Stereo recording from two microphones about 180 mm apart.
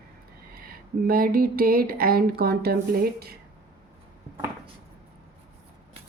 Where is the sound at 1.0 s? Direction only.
55° right (ahead or behind).